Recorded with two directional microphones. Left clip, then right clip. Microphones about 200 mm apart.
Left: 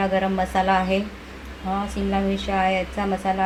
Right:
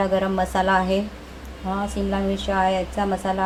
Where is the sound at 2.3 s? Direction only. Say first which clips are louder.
Right 2 dB; 15° right (ahead or behind).